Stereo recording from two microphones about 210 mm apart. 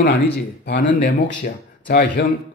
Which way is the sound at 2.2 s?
55° left (ahead or behind).